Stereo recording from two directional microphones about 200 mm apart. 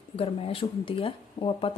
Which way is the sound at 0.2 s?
30° left (ahead or behind).